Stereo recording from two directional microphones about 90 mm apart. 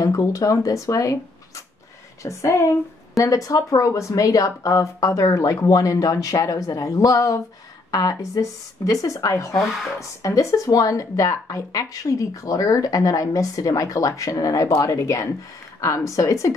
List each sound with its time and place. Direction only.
0.0 s speech: 40° left (ahead or behind)